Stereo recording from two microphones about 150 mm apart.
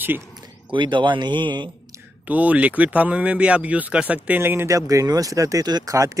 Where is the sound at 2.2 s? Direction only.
10° right (ahead or behind).